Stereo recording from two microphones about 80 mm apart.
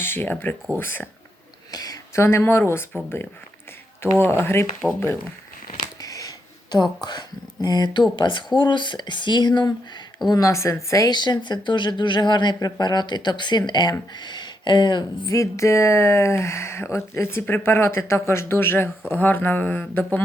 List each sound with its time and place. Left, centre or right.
0.0 s speech: left
1.7 s a sound: left
2.1 s speech: left
4.3 s speech: left
5.8 s a sound: left
7.0 s speech: left
10.2 s speech: left
11.1 s speech: left
15.3 s speech: left